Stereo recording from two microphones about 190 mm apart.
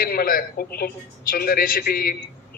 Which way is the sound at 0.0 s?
50° left (ahead or behind).